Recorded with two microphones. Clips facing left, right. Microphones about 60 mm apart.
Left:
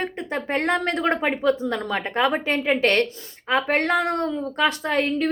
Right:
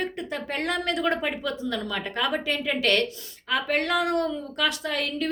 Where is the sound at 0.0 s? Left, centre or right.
Left.